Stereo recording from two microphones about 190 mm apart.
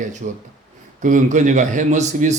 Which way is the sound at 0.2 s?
40° right (ahead or behind).